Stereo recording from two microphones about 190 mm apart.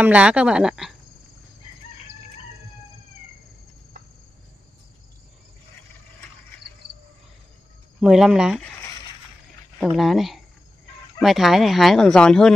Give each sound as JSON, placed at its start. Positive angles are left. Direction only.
{"t": 0.0, "sound": "speech", "side_deg": -5}
{"t": 6.8, "sound": "cricket", "side_deg": -60}
{"t": 8.0, "sound": "speech", "side_deg": -5}
{"t": 9.8, "sound": "speech", "side_deg": 0}